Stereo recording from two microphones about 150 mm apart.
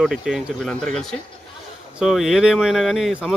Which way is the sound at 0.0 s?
5° right (ahead or behind).